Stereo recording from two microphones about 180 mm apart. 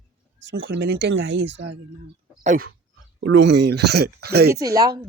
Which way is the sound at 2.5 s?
40° right (ahead or behind).